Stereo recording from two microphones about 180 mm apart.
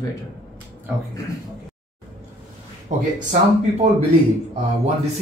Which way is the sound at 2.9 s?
45° right (ahead or behind).